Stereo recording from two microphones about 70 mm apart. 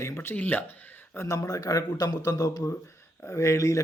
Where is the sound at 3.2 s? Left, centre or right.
Left.